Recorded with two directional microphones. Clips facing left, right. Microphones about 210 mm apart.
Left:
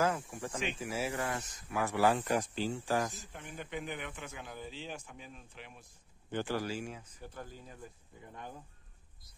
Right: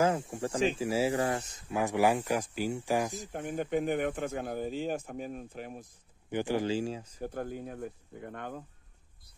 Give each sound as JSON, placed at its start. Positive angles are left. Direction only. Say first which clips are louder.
{"t": 0.0, "sound": "speech", "louder": "right 5 dB", "side_deg": -25}
{"t": 3.3, "sound": "speech", "louder": "right 11 dB", "side_deg": -50}
{"t": 6.3, "sound": "speech", "louder": "right 6 dB", "side_deg": -15}
{"t": 6.8, "sound": "speech", "louder": "right 9 dB", "side_deg": -35}
{"t": 7.2, "sound": "speech", "louder": "right 11 dB", "side_deg": -55}